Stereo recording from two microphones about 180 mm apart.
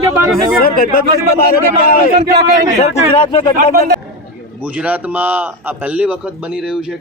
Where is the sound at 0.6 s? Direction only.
55° left (ahead or behind).